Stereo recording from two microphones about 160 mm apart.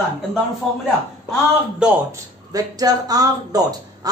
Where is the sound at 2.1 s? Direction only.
25° right (ahead or behind).